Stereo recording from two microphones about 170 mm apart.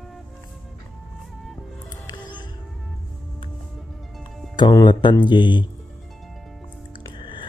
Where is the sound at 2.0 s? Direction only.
25° left (ahead or behind).